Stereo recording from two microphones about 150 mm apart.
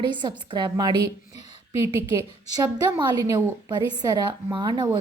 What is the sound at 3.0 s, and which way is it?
A woman's voice, 25° right (ahead or behind).